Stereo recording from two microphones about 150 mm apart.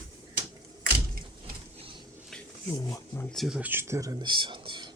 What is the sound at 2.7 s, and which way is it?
Speech, 20° left (ahead or behind).